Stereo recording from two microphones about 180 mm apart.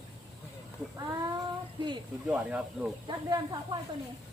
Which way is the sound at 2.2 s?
5° right (ahead or behind).